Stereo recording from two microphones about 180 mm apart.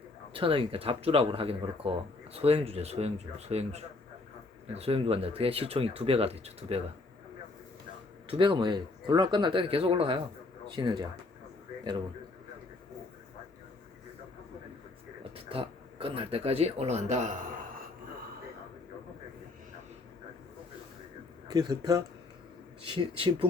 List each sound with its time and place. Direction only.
0.3 s speech: 30° right (ahead or behind)
8.3 s speech: 25° right (ahead or behind)
15.2 s speech: 30° right (ahead or behind)
21.4 s speech: 20° right (ahead or behind)